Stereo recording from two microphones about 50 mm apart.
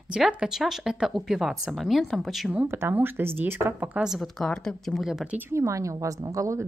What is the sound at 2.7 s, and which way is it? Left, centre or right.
Speech, right.